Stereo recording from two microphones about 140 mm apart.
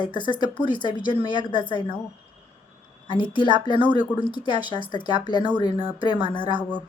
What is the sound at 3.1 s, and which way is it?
Speech, 35° left (ahead or behind).